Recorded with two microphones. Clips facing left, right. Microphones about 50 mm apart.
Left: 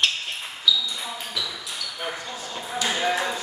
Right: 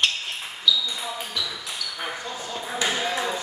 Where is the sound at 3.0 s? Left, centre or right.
Centre.